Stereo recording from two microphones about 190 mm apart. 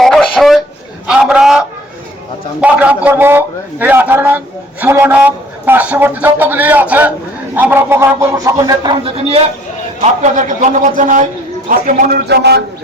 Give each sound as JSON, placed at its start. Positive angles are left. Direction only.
{"t": 0.0, "sound": "a sound", "side_deg": 0}
{"t": 2.6, "sound": "a man's voice", "side_deg": -5}
{"t": 10.0, "sound": "a man's voice", "side_deg": -40}